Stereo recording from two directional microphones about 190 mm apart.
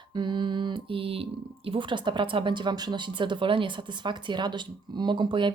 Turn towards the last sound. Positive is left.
turn(degrees=-25)  # may be behind; listen again after turning